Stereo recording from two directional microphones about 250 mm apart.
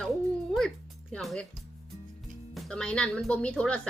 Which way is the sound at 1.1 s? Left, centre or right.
Centre.